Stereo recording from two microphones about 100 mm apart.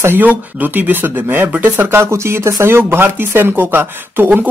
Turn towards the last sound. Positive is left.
turn(degrees=-20)  # may be behind; listen again after turning